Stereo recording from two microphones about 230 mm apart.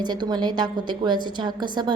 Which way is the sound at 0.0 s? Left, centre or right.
Centre.